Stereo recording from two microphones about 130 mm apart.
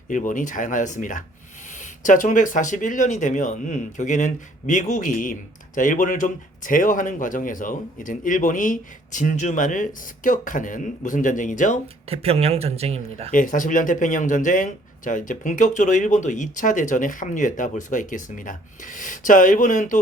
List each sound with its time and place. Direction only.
0.1 s speech: 85° left
12.0 s speech: 50° right (ahead or behind)
13.3 s speech: 90° left